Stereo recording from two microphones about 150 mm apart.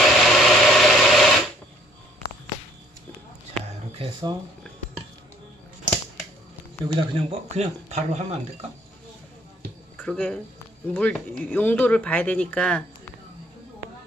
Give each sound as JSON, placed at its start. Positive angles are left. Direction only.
{"t": 0.0, "sound": "a sound", "side_deg": 0}
{"t": 4.0, "sound": "speech", "side_deg": -30}
{"t": 6.9, "sound": "speech", "side_deg": -40}
{"t": 9.9, "sound": "speech", "side_deg": 10}